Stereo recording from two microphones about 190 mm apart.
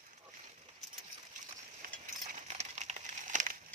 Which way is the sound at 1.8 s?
40° right (ahead or behind).